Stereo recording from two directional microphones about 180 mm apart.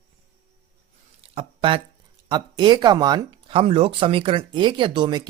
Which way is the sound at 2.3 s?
25° right (ahead or behind).